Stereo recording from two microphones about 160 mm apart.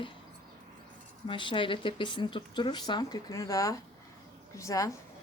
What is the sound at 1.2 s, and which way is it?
Speech, 30° left (ahead or behind).